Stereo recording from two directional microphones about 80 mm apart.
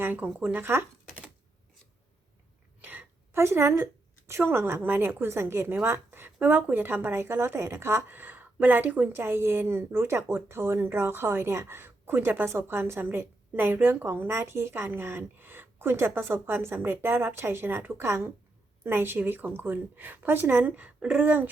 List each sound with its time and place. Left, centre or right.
0.0 s speech: right
2.8 s a sound: right
3.3 s a woman's voice: right